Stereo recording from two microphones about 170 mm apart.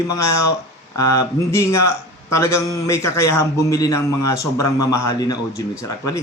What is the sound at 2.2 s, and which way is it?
A man's voice, 15° left (ahead or behind).